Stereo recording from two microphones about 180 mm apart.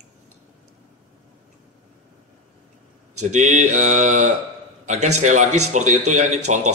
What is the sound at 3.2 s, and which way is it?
A man's voice, 40° right (ahead or behind).